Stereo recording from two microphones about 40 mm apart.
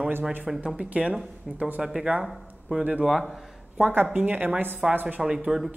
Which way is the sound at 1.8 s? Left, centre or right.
Centre.